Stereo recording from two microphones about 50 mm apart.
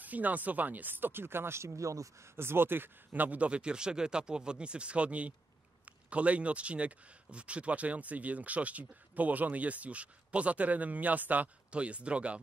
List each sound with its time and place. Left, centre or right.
0.0 s speech: right
2.4 s speech: right